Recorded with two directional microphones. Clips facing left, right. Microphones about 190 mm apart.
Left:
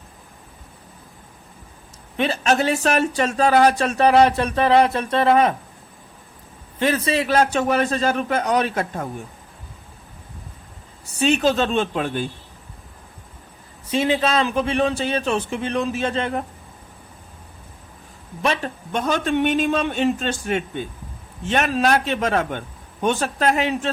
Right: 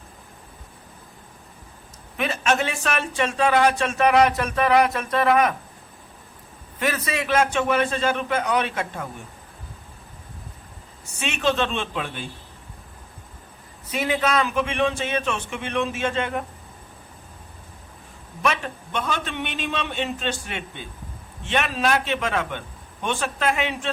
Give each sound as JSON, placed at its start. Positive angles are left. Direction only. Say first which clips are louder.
{"t": 2.1, "sound": "speech", "louder": "left 3 dB", "side_deg": 30}
{"t": 6.7, "sound": "speech", "louder": "left 5 dB", "side_deg": 30}
{"t": 11.0, "sound": "speech", "louder": "left 6 dB", "side_deg": 35}
{"t": 13.8, "sound": "speech", "louder": "left 4 dB", "side_deg": 30}
{"t": 18.4, "sound": "a man's voice", "louder": "left 2 dB", "side_deg": 35}